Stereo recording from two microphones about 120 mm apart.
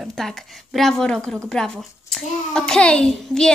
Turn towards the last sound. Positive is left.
turn(degrees=5)  # may be behind; listen again after turning